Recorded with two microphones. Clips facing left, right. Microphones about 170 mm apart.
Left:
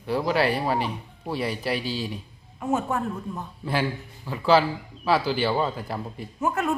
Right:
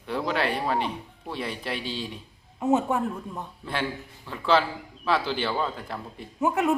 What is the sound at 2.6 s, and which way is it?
Speech, 20° right (ahead or behind).